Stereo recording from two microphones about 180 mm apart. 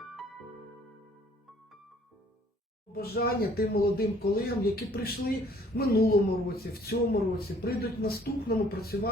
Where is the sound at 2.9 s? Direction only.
60° left (ahead or behind).